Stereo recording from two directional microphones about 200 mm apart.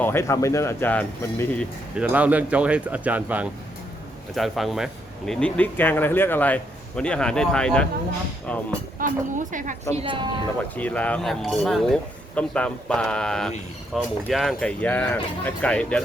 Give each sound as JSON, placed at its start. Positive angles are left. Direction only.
{"t": 0.0, "sound": "speech", "side_deg": 10}
{"t": 2.0, "sound": "speech", "side_deg": -5}
{"t": 9.0, "sound": "speech", "side_deg": -40}
{"t": 9.9, "sound": "a woman's voice", "side_deg": -25}
{"t": 10.8, "sound": "speech", "side_deg": 5}